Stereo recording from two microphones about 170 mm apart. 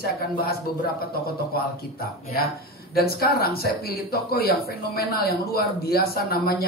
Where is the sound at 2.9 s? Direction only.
65° left (ahead or behind).